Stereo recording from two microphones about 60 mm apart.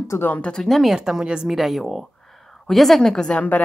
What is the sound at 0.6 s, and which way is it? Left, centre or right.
Speech, centre.